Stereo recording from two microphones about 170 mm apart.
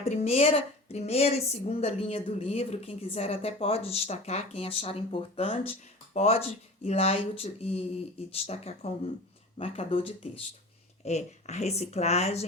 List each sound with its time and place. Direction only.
0.0 s a woman's voice: 40° left (ahead or behind)